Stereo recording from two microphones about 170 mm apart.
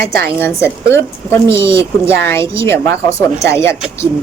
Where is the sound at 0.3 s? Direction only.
15° left (ahead or behind).